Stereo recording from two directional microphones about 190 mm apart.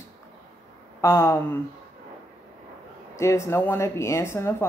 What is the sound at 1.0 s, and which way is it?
Speech, 15° left (ahead or behind).